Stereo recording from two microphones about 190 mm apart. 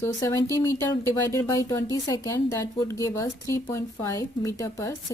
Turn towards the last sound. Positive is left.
turn(degrees=15)  # may be behind; listen again after turning